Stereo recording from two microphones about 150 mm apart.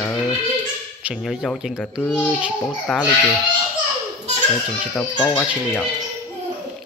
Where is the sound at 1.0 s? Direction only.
5° right (ahead or behind).